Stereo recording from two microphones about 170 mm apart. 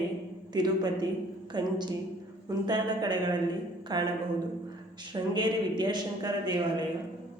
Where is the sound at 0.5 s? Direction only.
25° right (ahead or behind).